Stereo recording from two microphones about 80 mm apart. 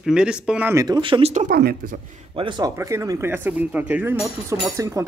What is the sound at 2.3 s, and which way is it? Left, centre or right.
Speech, right.